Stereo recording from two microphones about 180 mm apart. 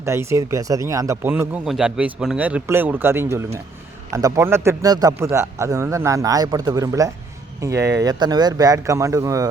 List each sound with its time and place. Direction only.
0.0 s a man's voice: 15° right (ahead or behind)